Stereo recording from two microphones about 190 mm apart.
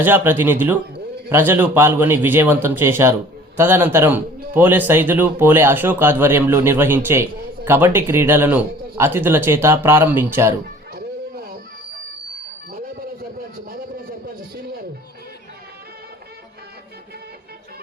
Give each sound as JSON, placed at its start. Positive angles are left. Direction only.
{"t": 0.0, "sound": "speech", "side_deg": -10}
{"t": 10.9, "sound": "music", "side_deg": -50}